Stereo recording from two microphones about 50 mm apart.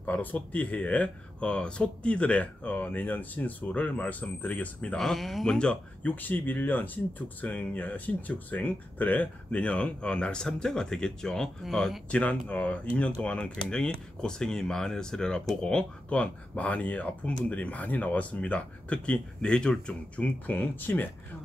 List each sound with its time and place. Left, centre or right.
0.0 s speech: left
4.9 s speech: centre
5.6 s speech: left
6.1 s speech: left; by 11.5 s centre
12.1 s speech: left
20.2 s speech: left